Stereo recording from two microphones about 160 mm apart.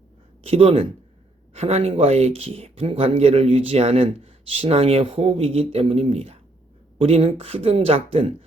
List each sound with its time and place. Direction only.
0.4 s speech: 35° right (ahead or behind)